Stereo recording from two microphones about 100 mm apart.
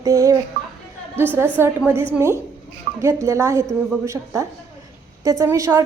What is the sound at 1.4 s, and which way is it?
A woman's voice, 25° right (ahead or behind).